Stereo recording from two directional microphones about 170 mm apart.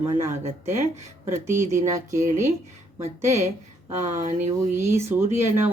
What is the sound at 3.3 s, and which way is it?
Speech, 15° right (ahead or behind).